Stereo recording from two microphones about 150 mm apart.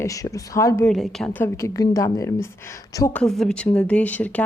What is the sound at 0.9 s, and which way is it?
A woman's voice, centre (ahead or behind).